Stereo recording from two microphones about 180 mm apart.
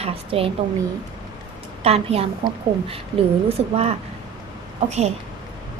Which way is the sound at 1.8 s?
35° right (ahead or behind).